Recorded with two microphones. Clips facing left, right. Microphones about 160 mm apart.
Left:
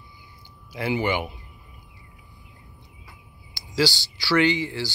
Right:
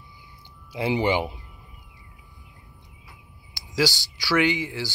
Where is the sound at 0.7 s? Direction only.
25° right (ahead or behind).